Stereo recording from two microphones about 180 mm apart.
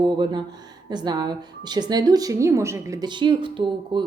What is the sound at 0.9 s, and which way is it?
A woman's voice, 25° right (ahead or behind).